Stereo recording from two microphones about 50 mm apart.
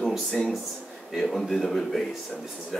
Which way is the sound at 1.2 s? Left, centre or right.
Centre.